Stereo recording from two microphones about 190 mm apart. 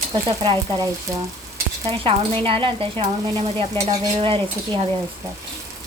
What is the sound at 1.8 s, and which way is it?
Speech, 25° right (ahead or behind).